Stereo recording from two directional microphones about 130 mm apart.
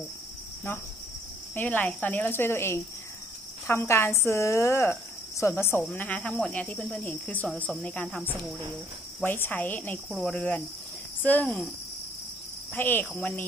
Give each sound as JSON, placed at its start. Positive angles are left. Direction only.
{"t": 1.5, "sound": "speech", "side_deg": 10}
{"t": 10.0, "sound": "speech", "side_deg": 5}
{"t": 12.7, "sound": "speech", "side_deg": 15}